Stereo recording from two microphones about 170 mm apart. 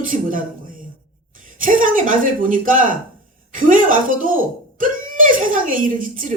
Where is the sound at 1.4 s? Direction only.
55° right (ahead or behind).